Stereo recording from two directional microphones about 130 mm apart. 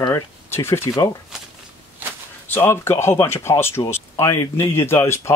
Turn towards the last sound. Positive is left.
turn(degrees=20)  # may be behind; listen again after turning